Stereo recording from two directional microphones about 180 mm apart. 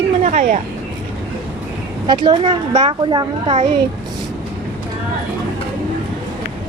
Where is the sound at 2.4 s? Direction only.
35° right (ahead or behind).